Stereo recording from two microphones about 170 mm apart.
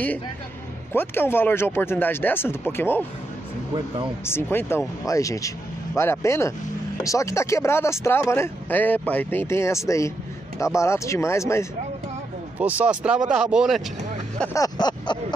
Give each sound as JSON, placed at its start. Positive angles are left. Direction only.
{"t": 0.9, "sound": "speech", "side_deg": 10}
{"t": 4.3, "sound": "speech", "side_deg": 15}
{"t": 12.5, "sound": "speech", "side_deg": -10}
{"t": 14.5, "sound": "a sound", "side_deg": 20}